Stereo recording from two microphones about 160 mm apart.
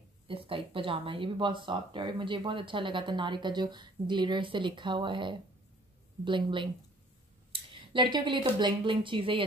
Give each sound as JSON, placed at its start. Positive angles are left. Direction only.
{"t": 0.3, "sound": "speech", "side_deg": -35}
{"t": 7.9, "sound": "speech", "side_deg": -30}